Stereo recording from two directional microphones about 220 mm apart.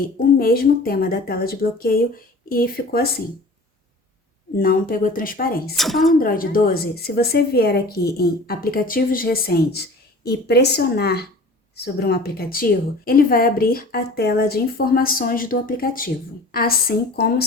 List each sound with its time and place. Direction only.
0.0 s a woman's voice: 45° left (ahead or behind)
4.5 s a woman's voice: 40° left (ahead or behind)
5.7 s speech: centre (ahead or behind)
6.1 s a woman's voice: 40° left (ahead or behind)